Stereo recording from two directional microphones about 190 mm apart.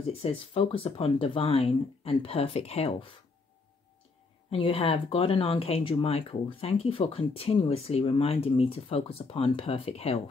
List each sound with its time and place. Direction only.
0.2 s speech: 30° left (ahead or behind)
4.5 s speech: 30° left (ahead or behind)